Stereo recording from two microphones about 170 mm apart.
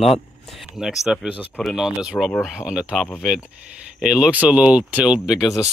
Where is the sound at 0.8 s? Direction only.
5° right (ahead or behind).